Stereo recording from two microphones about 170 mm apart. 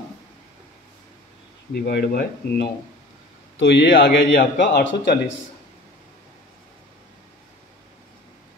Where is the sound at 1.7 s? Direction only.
65° left (ahead or behind).